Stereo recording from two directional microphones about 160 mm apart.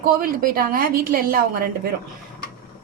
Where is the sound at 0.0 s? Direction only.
65° right (ahead or behind).